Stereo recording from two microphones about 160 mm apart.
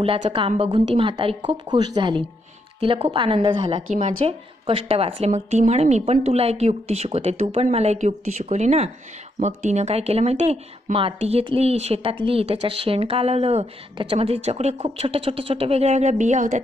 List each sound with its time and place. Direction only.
0.0 s speech: 35° right (ahead or behind)